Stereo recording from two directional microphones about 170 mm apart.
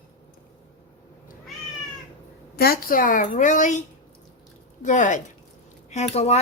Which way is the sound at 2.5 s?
65° left (ahead or behind).